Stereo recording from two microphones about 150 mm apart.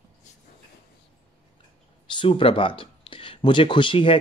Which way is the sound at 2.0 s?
35° left (ahead or behind).